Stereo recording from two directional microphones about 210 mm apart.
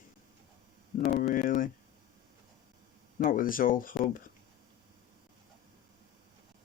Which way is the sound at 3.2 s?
40° left (ahead or behind).